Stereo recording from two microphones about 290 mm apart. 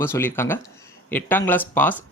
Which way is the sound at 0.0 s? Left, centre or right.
Centre.